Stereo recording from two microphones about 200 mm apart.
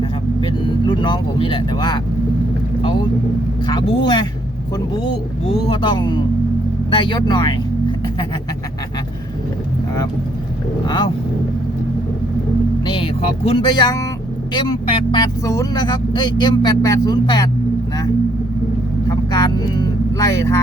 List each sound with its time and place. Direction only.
0.0 s vehicle: 25° left (ahead or behind)
3.7 s speech: 25° left (ahead or behind)
10.8 s speech: 20° left (ahead or behind)
12.8 s speech: 25° left (ahead or behind)
19.0 s speech: 20° left (ahead or behind)